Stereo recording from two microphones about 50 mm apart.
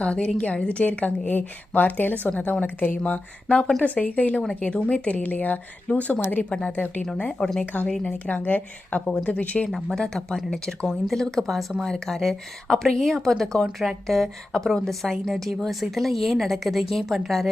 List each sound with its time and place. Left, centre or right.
0.0 s a woman's voice: left
6.5 s a woman's voice: centre
7.6 s speech: left
9.0 s a woman's voice: centre
9.4 s speech: left
9.9 s speech: centre